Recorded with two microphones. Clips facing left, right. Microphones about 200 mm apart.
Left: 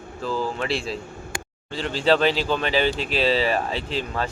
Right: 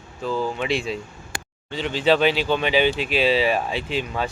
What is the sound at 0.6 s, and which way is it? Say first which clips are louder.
Speech: right 2 dB; 35° left (ahead or behind).